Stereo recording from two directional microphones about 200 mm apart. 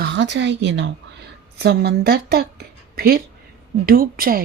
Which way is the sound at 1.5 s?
55° right (ahead or behind).